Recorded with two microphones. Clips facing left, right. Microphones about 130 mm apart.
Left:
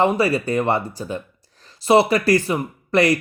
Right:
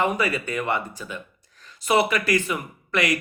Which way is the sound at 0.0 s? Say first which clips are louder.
Left 6 dB; 35° left (ahead or behind).